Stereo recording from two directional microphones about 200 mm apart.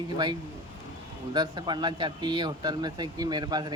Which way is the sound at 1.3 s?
20° right (ahead or behind).